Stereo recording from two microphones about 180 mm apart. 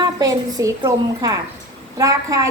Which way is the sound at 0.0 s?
20° right (ahead or behind).